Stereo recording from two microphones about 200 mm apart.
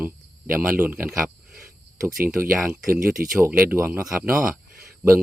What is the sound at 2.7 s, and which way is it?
Speech, 5° right (ahead or behind).